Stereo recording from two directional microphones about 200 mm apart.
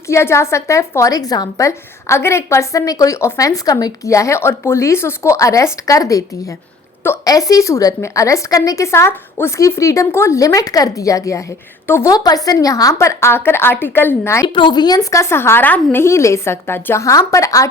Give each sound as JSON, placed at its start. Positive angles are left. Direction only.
{"t": 0.1, "sound": "a woman's voice", "side_deg": 15}